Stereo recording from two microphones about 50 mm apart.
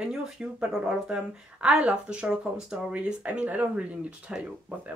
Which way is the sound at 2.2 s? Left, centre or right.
Centre.